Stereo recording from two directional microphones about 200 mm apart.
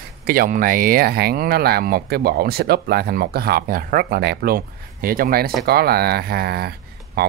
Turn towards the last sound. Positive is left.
turn(degrees=-50)  # may be behind; listen again after turning